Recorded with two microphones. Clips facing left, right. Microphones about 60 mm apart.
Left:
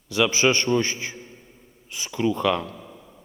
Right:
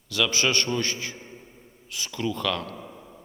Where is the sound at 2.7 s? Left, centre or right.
Centre.